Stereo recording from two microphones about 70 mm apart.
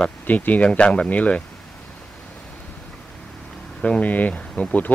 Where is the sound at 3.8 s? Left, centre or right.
Centre.